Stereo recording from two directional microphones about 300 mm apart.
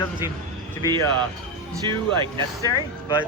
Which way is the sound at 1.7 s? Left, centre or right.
Centre.